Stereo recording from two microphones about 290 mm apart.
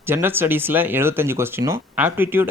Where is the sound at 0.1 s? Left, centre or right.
Centre.